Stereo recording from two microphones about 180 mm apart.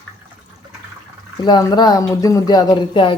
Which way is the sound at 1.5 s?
20° left (ahead or behind).